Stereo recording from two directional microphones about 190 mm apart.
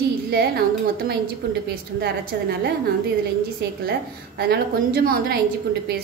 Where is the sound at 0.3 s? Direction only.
55° right (ahead or behind).